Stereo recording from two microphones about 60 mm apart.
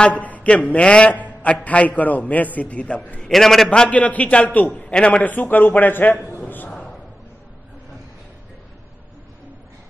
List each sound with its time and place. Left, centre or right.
0.0 s a man's voice: left
3.3 s a man's voice: centre
3.9 s a man's voice: left
5.2 s a man's voice: left
6.4 s a sound: left